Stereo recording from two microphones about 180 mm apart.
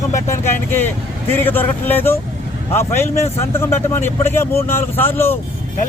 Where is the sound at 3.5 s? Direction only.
15° left (ahead or behind).